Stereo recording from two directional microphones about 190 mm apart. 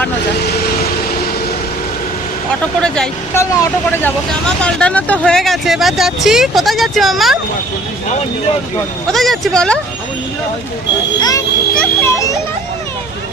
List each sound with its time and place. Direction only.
0.3 s vehicle: 60° left (ahead or behind)
2.8 s speech: 5° left (ahead or behind)
9.0 s speech: centre (ahead or behind)
11.2 s a child's voice: 20° left (ahead or behind)